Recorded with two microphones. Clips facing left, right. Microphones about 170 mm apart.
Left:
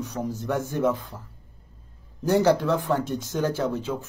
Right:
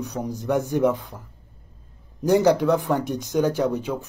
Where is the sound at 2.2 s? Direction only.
15° right (ahead or behind).